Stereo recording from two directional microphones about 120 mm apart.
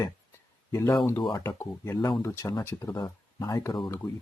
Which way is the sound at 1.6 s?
25° left (ahead or behind).